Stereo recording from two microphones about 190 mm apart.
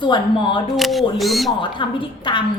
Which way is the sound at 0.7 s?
Centre (ahead or behind).